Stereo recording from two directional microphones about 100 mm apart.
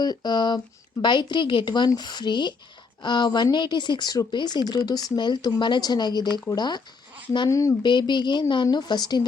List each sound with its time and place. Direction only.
0.0 s speech: 45° left (ahead or behind)
7.5 s speech: 35° left (ahead or behind)
7.8 s speech: 50° left (ahead or behind)